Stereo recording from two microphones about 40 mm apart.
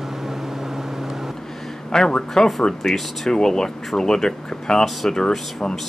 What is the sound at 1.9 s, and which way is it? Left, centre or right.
Speech, centre.